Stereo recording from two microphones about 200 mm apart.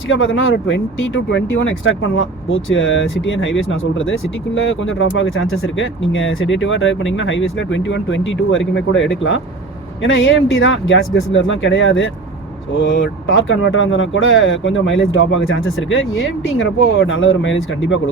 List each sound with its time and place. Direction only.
0.1 s speech: 75° left (ahead or behind)